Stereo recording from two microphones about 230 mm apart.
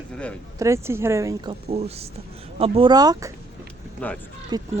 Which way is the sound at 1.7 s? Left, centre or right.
Right.